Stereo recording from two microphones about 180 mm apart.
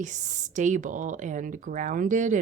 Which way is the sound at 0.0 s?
45° right (ahead or behind).